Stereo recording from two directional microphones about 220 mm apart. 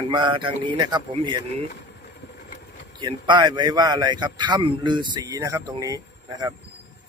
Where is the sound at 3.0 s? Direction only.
20° right (ahead or behind).